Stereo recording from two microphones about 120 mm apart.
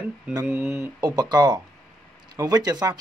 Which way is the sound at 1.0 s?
35° right (ahead or behind).